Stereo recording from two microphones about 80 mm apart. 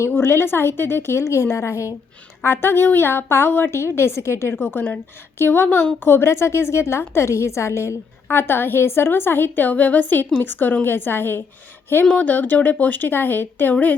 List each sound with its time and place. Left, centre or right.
0.0 s a woman's voice: left